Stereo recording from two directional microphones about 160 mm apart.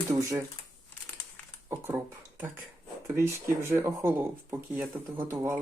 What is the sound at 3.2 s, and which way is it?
Speech, 15° right (ahead or behind).